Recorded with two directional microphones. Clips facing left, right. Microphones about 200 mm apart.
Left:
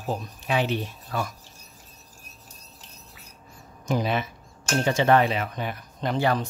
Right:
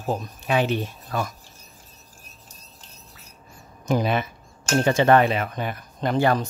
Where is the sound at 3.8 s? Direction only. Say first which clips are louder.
Right 3 dB; 50° right (ahead or behind).